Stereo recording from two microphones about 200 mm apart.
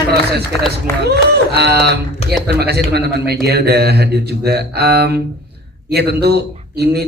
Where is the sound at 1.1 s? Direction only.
55° right (ahead or behind).